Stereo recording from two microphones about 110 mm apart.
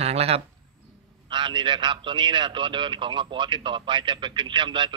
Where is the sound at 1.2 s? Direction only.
45° right (ahead or behind).